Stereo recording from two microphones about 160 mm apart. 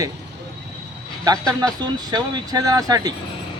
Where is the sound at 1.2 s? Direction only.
25° right (ahead or behind).